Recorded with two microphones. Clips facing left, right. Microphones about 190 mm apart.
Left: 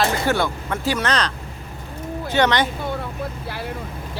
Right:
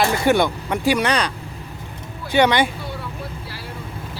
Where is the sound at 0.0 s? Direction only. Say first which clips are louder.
Right 3 dB; 15° right (ahead or behind).